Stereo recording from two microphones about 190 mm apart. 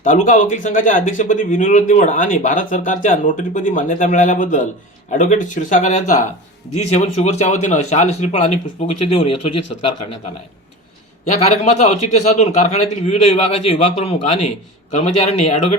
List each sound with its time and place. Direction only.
0.0 s a man's voice: 40° left (ahead or behind)
11.3 s a man's voice: 35° left (ahead or behind)